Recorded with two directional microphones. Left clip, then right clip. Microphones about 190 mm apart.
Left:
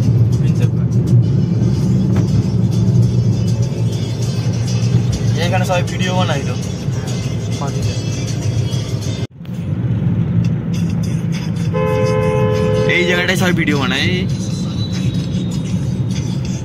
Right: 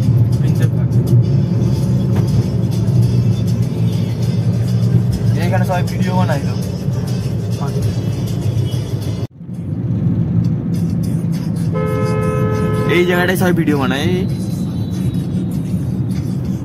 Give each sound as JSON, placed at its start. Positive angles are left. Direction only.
{"t": 12.9, "sound": "speech", "side_deg": -30}